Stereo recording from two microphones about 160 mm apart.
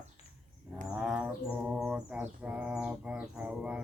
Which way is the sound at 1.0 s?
5° right (ahead or behind).